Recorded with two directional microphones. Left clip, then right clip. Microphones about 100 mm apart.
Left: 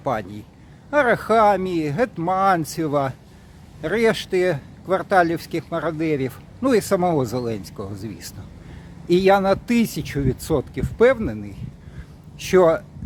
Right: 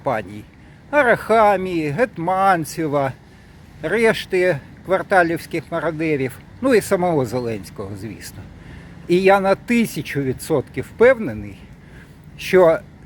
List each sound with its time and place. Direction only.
0.0 s a man's voice: 20° left (ahead or behind)
12.4 s speech: 20° left (ahead or behind)